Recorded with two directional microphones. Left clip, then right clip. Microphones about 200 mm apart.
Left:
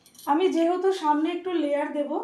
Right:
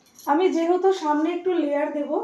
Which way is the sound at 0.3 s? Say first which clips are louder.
Right 2 dB; 25° left (ahead or behind).